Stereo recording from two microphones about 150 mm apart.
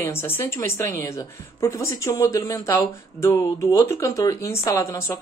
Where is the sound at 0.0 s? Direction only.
15° left (ahead or behind).